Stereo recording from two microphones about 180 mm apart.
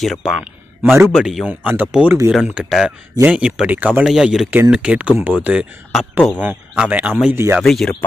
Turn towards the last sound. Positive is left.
turn(degrees=0)  # may be behind; listen again after turning